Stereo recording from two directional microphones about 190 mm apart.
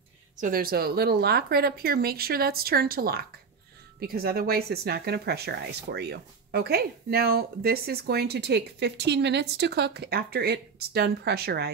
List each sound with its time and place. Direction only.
0.4 s speech: 50° right (ahead or behind)